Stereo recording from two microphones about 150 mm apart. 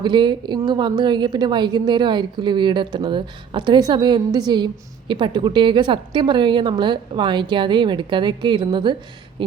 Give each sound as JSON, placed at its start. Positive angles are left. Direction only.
{"t": 0.0, "sound": "a woman's voice", "side_deg": -30}